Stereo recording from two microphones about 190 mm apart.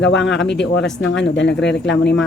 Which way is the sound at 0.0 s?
70° left (ahead or behind).